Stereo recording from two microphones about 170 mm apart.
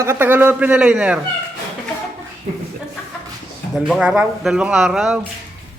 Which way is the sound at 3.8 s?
5° right (ahead or behind).